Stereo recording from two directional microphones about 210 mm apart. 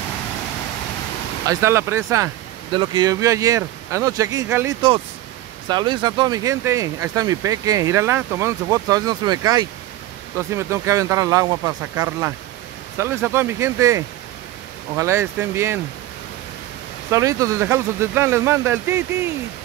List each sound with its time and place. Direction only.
1.5 s speech: 15° right (ahead or behind)
17.1 s speech: 15° right (ahead or behind)